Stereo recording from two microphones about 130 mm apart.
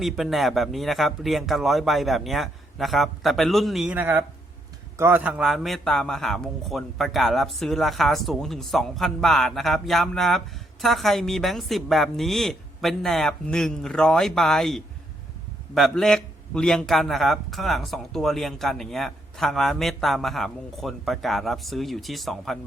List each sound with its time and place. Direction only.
0.0 s a man's voice: centre (ahead or behind)
3.9 s a man's voice: 15° right (ahead or behind); by 22.5 s centre (ahead or behind)